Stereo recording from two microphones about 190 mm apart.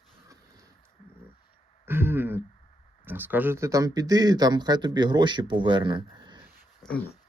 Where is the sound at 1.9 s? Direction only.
10° right (ahead or behind).